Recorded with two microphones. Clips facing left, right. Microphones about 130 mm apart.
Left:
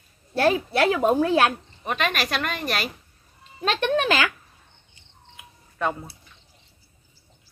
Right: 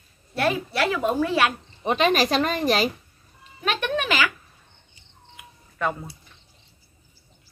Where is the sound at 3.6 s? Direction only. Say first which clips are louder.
Left 3 dB; 35° left (ahead or behind).